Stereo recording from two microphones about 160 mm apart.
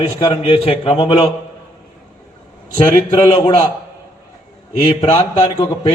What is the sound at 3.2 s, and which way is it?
Speech, 35° left (ahead or behind).